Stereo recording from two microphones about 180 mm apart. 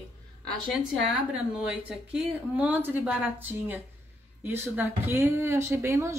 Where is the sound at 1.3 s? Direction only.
5° right (ahead or behind).